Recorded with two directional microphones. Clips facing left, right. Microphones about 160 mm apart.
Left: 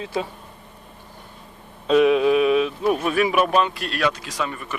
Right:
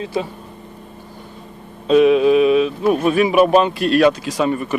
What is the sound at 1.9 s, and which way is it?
Speech, 20° right (ahead or behind).